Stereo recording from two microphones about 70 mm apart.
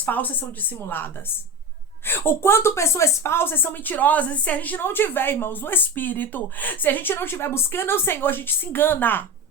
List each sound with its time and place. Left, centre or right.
0.0 s a woman's voice: left